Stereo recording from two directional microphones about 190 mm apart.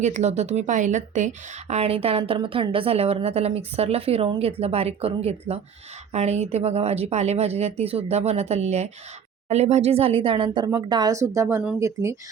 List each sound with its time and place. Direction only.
0.0 s a woman's voice: 35° right (ahead or behind); by 12.1 s 15° right (ahead or behind)